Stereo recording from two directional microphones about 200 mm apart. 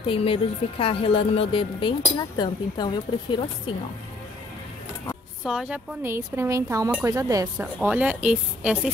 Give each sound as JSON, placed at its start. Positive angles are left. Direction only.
{"t": 0.0, "sound": "a woman's voice", "side_deg": 25}
{"t": 5.4, "sound": "speech", "side_deg": -5}